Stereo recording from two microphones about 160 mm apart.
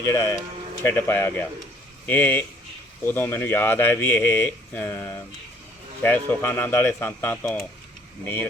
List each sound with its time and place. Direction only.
0.0 s speech: 20° left (ahead or behind)